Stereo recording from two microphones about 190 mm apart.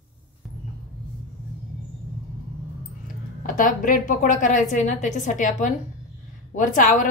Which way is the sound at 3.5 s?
45° left (ahead or behind).